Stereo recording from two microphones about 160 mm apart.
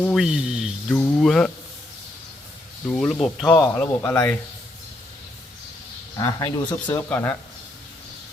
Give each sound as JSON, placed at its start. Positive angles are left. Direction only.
{"t": 0.0, "sound": "a sound", "side_deg": 0}
{"t": 0.9, "sound": "speech", "side_deg": 10}
{"t": 2.9, "sound": "speech", "side_deg": 5}
{"t": 3.5, "sound": "speech", "side_deg": 15}
{"t": 6.1, "sound": "speech", "side_deg": 20}
{"t": 6.9, "sound": "speech", "side_deg": 10}